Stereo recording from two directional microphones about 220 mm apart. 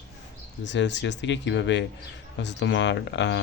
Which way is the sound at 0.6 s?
55° left (ahead or behind).